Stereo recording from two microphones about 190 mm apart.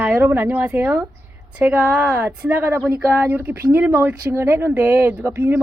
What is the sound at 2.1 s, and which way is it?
Speech, 5° right (ahead or behind).